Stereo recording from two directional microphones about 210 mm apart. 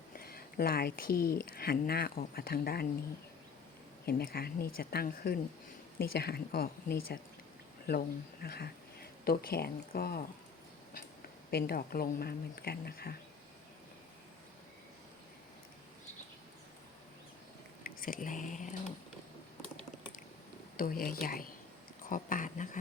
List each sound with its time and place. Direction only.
0.2 s speech: 45° left (ahead or behind)
4.0 s speech: 45° left (ahead or behind)
11.5 s speech: 50° left (ahead or behind)
17.8 s speech: 40° left (ahead or behind)
20.7 s speech: 40° left (ahead or behind)